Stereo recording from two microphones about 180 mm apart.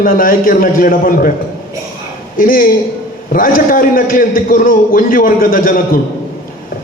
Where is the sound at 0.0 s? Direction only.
50° left (ahead or behind).